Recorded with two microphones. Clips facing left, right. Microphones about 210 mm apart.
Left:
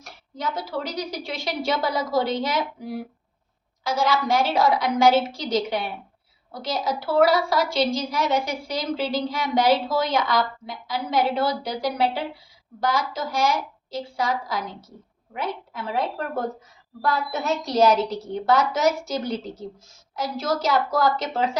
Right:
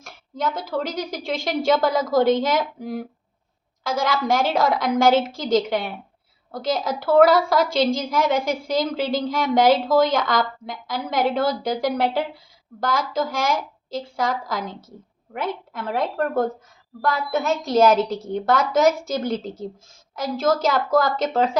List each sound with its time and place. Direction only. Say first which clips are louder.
0.0 s a woman's voice: right 4 dB; 50° right (ahead or behind)